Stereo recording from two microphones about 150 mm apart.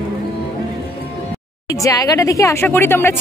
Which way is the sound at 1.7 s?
20° left (ahead or behind).